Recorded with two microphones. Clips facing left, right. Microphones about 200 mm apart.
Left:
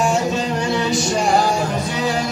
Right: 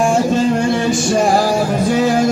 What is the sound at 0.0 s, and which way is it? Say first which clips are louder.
Music: right 5 dB; 50° right (ahead or behind).